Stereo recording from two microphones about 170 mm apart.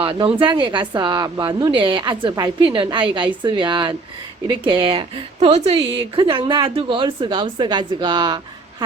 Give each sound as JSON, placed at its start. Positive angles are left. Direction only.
{"t": 0.0, "sound": "a woman's voice", "side_deg": -30}